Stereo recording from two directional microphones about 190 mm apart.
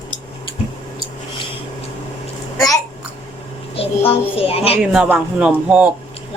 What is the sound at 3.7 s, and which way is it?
A child's voice, 30° left (ahead or behind).